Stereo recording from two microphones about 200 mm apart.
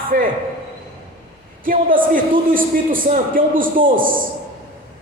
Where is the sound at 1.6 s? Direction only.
45° right (ahead or behind).